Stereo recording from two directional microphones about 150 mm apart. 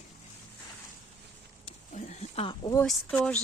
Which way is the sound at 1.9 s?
50° left (ahead or behind).